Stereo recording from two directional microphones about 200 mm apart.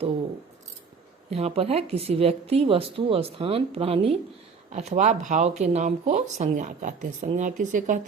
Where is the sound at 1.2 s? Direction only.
30° right (ahead or behind).